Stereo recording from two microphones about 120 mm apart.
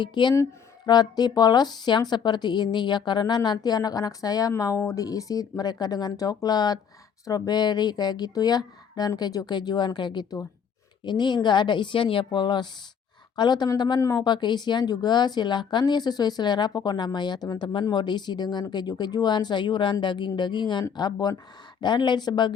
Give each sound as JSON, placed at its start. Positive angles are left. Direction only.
{"t": 0.0, "sound": "a woman's voice", "side_deg": 40}